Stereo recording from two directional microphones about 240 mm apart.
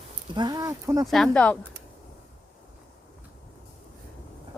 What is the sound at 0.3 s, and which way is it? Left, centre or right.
Speech, centre.